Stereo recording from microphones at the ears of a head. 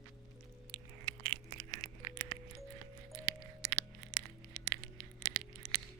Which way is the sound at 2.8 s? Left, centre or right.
Right.